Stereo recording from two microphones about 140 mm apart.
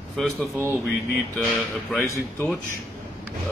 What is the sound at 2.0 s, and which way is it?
Speech, 20° left (ahead or behind).